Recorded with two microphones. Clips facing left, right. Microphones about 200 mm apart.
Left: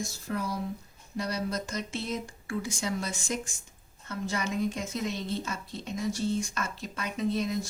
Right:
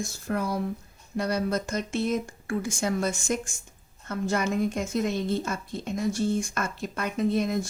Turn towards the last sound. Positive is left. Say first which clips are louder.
# right 4 dB
turn(degrees=-55)  # may be behind; listen again after turning